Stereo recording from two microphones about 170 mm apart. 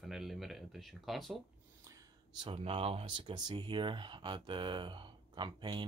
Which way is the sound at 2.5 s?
35° right (ahead or behind).